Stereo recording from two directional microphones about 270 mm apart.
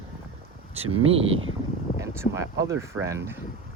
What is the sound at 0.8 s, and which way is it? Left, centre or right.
Speech, right.